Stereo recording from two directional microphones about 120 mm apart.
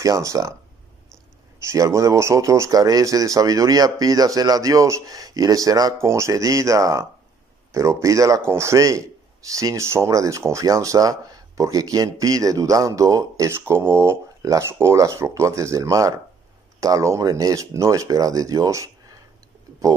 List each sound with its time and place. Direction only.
0.0 s speech: 25° right (ahead or behind)
1.6 s speech: 25° right (ahead or behind)